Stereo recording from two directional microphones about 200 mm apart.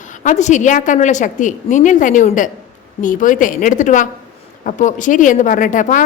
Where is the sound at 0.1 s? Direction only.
40° left (ahead or behind).